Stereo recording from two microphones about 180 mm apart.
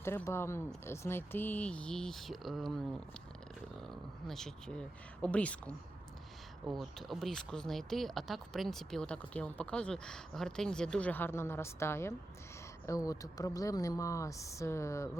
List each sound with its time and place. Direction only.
0.0 s speech: 15° left (ahead or behind)
4.3 s speech: 5° left (ahead or behind)
6.7 s speech: centre (ahead or behind); by 15.2 s 15° left (ahead or behind)